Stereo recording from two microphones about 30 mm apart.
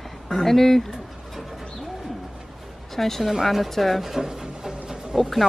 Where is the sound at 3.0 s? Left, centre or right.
Centre.